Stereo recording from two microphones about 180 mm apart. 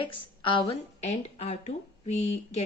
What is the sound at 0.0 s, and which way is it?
A woman's voice, 30° left (ahead or behind).